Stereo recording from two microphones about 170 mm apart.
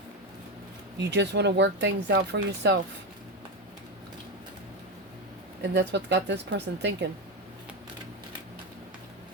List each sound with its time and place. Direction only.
0.9 s speech: 90° right
5.7 s speech: 85° right